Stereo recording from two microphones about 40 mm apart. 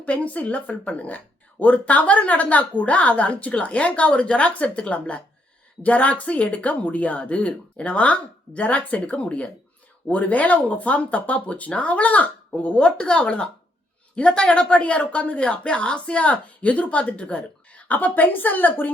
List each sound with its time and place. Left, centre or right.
0.0 s speech: left